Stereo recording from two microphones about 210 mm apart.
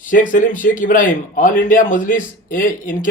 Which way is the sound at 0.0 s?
40° left (ahead or behind).